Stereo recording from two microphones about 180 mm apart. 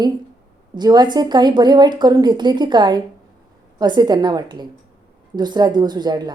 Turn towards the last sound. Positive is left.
turn(degrees=-25)  # may be behind; listen again after turning